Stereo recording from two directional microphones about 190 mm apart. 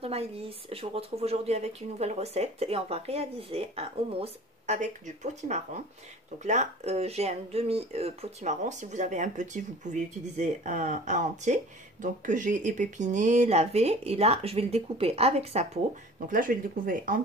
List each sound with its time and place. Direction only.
0.0 s speech: 30° right (ahead or behind)
16.3 s speech: 45° right (ahead or behind)